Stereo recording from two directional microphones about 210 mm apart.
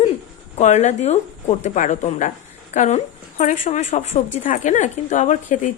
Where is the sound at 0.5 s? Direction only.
35° left (ahead or behind).